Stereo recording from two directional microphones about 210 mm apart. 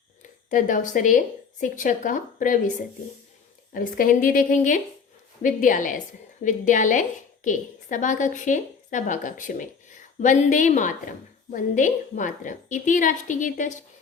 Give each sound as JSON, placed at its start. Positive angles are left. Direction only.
{"t": 0.2, "sound": "a woman's voice", "side_deg": 40}